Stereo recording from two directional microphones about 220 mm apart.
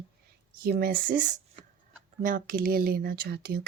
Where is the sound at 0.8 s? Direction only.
40° right (ahead or behind).